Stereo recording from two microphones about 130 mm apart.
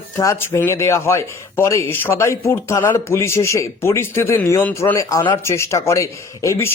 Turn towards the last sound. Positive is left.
turn(degrees=25)  # may be behind; listen again after turning